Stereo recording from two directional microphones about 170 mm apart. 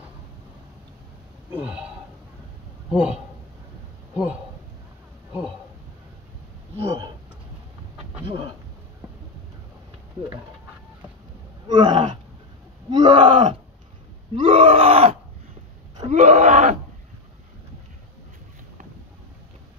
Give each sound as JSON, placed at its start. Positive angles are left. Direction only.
{"t": 1.5, "sound": "speech", "side_deg": -5}
{"t": 2.9, "sound": "a man's voice", "side_deg": -5}
{"t": 6.8, "sound": "groan", "side_deg": -35}
{"t": 11.6, "sound": "a sound", "side_deg": -25}
{"t": 12.9, "sound": "speech", "side_deg": -30}
{"t": 14.3, "sound": "groan", "side_deg": -30}